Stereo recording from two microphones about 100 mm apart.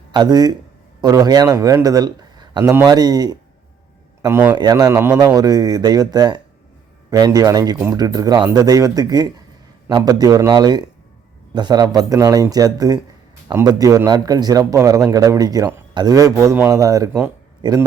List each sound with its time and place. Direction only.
0.1 s speech: 45° right (ahead or behind)
4.3 s a man's voice: 20° right (ahead or behind)
4.5 s speech: 40° right (ahead or behind)
5.1 s speech: 40° right (ahead or behind)
17.6 s speech: 45° right (ahead or behind)